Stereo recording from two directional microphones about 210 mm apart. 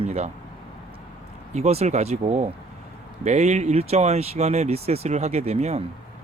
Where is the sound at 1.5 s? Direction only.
30° right (ahead or behind).